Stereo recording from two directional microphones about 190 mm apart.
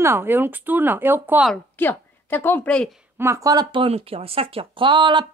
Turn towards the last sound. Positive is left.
turn(degrees=-25)  # may be behind; listen again after turning